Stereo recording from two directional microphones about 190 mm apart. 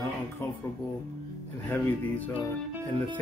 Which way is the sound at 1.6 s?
10° left (ahead or behind).